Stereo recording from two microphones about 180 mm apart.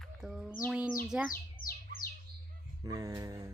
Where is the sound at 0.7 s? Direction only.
10° right (ahead or behind).